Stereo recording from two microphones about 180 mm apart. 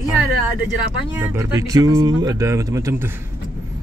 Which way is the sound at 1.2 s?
15° right (ahead or behind).